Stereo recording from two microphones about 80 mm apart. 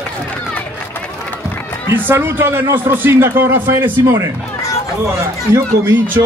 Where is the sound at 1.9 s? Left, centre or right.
Right.